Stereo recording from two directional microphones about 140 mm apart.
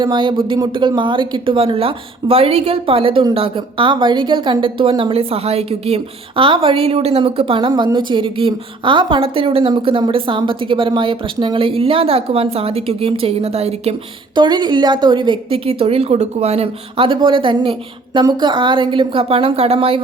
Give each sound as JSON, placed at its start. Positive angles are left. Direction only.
{"t": 0.0, "sound": "speech", "side_deg": -35}
{"t": 14.3, "sound": "speech", "side_deg": -30}